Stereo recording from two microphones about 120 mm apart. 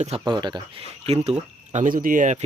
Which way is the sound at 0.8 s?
60° right (ahead or behind).